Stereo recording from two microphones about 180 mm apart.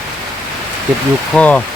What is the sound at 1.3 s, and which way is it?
Speech, 5° left (ahead or behind).